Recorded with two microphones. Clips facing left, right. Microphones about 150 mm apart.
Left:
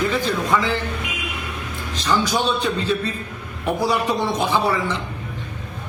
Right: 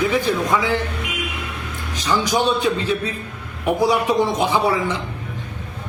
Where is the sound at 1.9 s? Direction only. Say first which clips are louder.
Right 1 dB; 15° right (ahead or behind).